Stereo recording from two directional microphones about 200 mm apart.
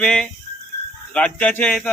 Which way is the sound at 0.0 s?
5° left (ahead or behind).